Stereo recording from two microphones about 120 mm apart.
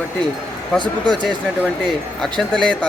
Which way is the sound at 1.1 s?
40° right (ahead or behind).